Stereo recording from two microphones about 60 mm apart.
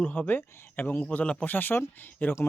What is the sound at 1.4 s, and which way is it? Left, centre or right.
Speech, left.